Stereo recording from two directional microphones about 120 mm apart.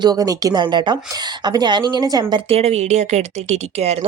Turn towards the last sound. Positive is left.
turn(degrees=-60)  # may be behind; listen again after turning